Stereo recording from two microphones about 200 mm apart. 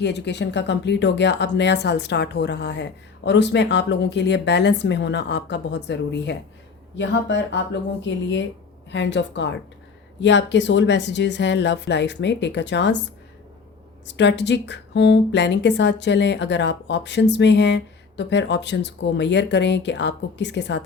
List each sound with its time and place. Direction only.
0.0 s speech: 60° left (ahead or behind)
14.2 s speech: 60° left (ahead or behind)